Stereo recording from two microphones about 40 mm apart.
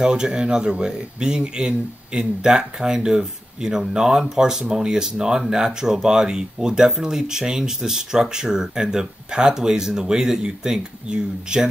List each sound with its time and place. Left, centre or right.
0.0 s speech: centre